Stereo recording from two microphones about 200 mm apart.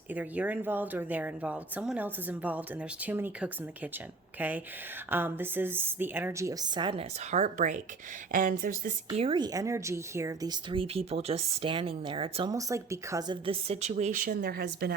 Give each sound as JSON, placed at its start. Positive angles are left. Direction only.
{"t": 0.1, "sound": "a woman's voice", "side_deg": -10}
{"t": 7.3, "sound": "speech", "side_deg": -35}
{"t": 9.1, "sound": "speech", "side_deg": -25}